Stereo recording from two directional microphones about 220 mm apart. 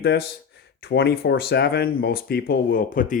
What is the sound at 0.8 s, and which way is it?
Speech, 45° left (ahead or behind).